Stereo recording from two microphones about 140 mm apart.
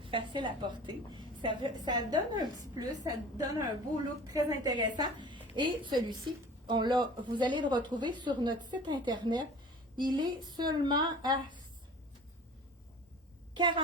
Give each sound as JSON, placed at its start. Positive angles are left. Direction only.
{"t": 0.0, "sound": "a woman's voice", "side_deg": -35}
{"t": 13.5, "sound": "a woman's voice", "side_deg": -35}